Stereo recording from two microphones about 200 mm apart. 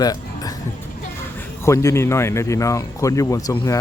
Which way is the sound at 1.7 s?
15° left (ahead or behind).